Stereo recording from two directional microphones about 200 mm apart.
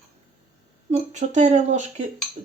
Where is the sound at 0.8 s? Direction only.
35° right (ahead or behind).